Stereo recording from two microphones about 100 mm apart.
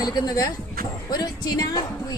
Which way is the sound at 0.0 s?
40° left (ahead or behind).